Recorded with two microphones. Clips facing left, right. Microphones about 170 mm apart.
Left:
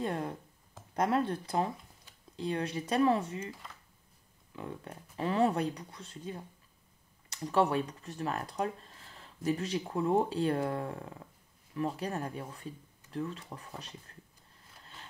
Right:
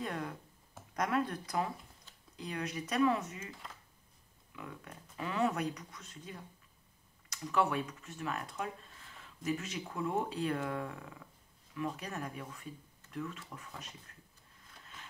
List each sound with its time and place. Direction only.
0.0 s a sound: 30° left (ahead or behind)
0.9 s speech: 30° left (ahead or behind)
4.6 s speech: 30° left (ahead or behind)